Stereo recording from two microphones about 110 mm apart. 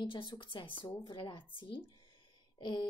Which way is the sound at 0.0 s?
50° left (ahead or behind).